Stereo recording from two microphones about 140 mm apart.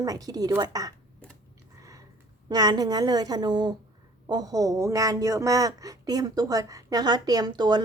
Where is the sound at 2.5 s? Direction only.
30° right (ahead or behind).